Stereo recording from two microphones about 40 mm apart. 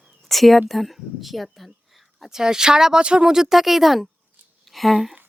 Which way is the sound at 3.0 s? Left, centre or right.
Right.